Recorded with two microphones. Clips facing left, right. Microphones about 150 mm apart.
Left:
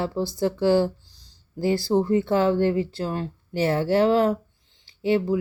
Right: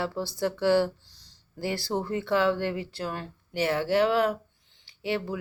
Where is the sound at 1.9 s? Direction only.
25° left (ahead or behind).